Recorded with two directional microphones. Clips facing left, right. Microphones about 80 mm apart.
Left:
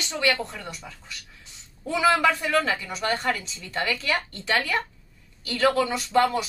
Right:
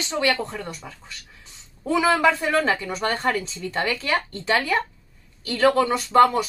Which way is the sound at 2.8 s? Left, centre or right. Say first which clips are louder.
Right 2 dB; right.